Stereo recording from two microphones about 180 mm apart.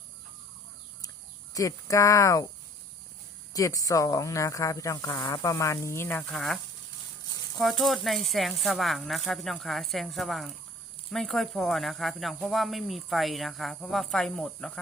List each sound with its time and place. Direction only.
1.5 s speech: 20° left (ahead or behind)
3.5 s speech: 20° left (ahead or behind); by 6.6 s 5° left (ahead or behind)
7.6 s speech: centre (ahead or behind)